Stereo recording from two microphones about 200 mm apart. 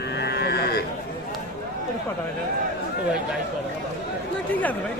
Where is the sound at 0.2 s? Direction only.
55° left (ahead or behind).